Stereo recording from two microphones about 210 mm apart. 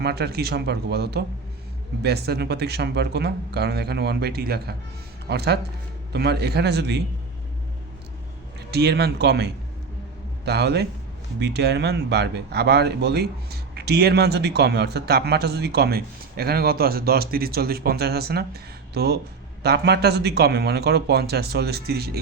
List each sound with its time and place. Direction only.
0.0 s speech: 50° right (ahead or behind)
8.7 s speech: 50° right (ahead or behind)